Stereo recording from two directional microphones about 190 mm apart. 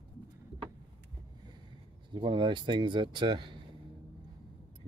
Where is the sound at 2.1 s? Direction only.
25° right (ahead or behind).